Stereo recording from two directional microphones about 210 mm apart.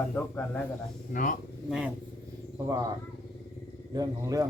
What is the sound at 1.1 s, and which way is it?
Speech, 40° left (ahead or behind).